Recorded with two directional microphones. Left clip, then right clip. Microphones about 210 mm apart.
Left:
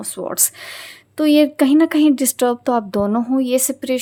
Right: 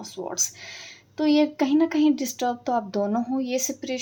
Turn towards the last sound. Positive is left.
turn(degrees=40)  # may be behind; listen again after turning